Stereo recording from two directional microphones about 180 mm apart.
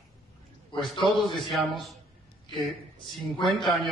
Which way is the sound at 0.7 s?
25° left (ahead or behind).